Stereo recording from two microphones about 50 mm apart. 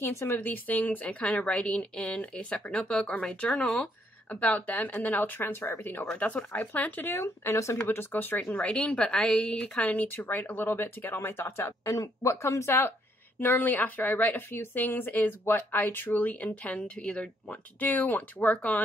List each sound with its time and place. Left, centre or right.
0.1 s speech: left
0.4 s a woman's voice: left
2.9 s a woman's voice: centre; by 5.4 s left
5.4 s speech: left
6.1 s speech: left
7.2 s speech: left
7.7 s speech: left
8.6 s a woman's voice: centre
9.8 s speech: left
13.4 s speech: left
17.7 s speech: left